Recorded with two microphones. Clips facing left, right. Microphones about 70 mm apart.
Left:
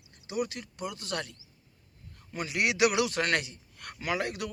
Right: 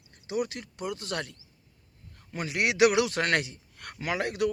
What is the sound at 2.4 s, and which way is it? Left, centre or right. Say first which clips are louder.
Speech: right 3 dB; right.